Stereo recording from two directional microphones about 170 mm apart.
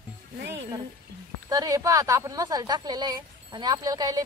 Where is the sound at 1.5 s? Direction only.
20° right (ahead or behind).